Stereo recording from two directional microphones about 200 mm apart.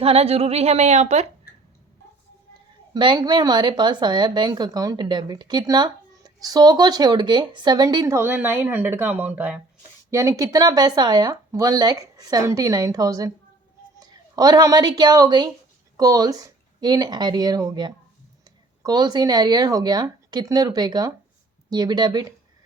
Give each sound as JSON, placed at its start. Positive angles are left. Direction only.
{"t": 0.0, "sound": "a woman's voice", "side_deg": -30}
{"t": 2.9, "sound": "a woman's voice", "side_deg": -20}